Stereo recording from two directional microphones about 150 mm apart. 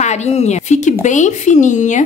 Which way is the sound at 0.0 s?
50° left (ahead or behind).